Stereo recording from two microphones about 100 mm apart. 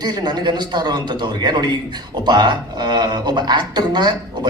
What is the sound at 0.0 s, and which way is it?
A man's voice, 45° right (ahead or behind).